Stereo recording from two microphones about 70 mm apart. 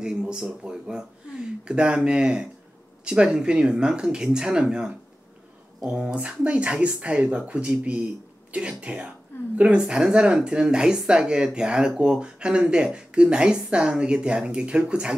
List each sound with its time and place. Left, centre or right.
0.0 s speech: centre